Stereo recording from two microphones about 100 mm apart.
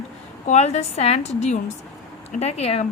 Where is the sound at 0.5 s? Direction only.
90° left.